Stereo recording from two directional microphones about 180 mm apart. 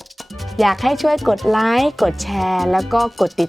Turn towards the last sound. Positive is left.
turn(degrees=0)  # may be behind; listen again after turning